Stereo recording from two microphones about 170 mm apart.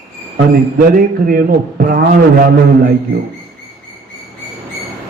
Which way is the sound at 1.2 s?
60° right (ahead or behind).